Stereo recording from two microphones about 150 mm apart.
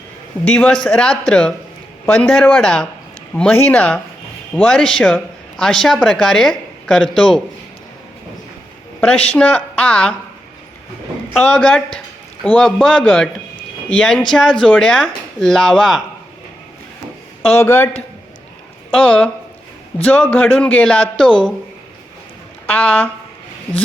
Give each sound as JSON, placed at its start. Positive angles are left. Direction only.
{"t": 0.4, "sound": "a woman's voice", "side_deg": 5}
{"t": 9.3, "sound": "speech", "side_deg": 10}
{"t": 11.3, "sound": "a woman's voice", "side_deg": 5}
{"t": 17.6, "sound": "speech", "side_deg": 15}
{"t": 18.9, "sound": "a woman's voice", "side_deg": 5}
{"t": 22.6, "sound": "speech", "side_deg": 10}